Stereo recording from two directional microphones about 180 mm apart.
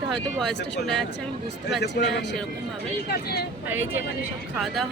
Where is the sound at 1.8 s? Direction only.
70° left (ahead or behind).